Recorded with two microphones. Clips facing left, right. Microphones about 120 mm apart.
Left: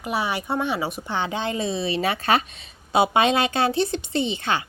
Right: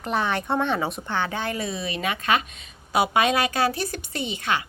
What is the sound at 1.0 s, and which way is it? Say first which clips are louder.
Speech: left 1 dB; 15° left (ahead or behind).